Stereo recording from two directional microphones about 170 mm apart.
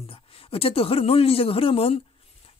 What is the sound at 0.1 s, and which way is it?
A man's voice, 35° left (ahead or behind).